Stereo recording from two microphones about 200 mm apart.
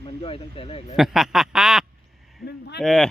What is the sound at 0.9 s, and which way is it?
Speech, centre (ahead or behind).